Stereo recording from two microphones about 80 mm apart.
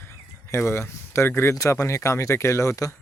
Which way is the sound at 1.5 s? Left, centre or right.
Left.